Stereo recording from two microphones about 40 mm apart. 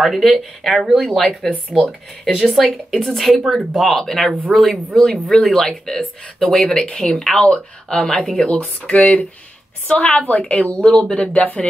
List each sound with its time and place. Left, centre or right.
0.0 s speech: centre
1.7 s speech: centre
8.6 s speech: left